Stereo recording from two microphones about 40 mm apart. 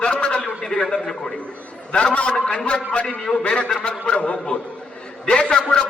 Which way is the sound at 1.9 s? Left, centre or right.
Left.